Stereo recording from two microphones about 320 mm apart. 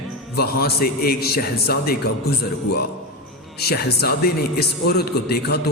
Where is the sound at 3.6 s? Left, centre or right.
Left.